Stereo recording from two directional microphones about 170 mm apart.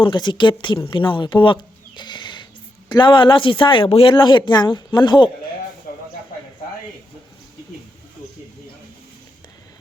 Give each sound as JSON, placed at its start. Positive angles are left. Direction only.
{"t": 0.0, "sound": "speech", "side_deg": 25}
{"t": 2.0, "sound": "a sound", "side_deg": 25}
{"t": 2.9, "sound": "speech", "side_deg": 30}